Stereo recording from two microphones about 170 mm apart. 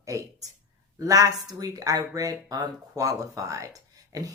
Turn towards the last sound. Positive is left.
turn(degrees=-20)  # may be behind; listen again after turning